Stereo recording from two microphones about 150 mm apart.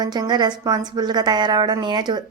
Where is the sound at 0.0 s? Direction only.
25° right (ahead or behind).